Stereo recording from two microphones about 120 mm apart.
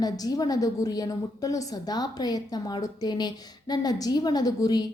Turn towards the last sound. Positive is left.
turn(degrees=35)  # may be behind; listen again after turning